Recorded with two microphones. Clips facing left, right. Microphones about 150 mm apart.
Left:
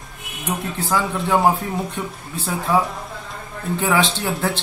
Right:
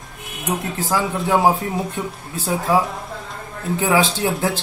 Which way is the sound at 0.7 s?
10° right (ahead or behind).